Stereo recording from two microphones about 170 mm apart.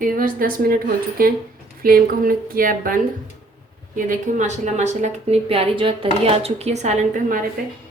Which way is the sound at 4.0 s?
50° right (ahead or behind).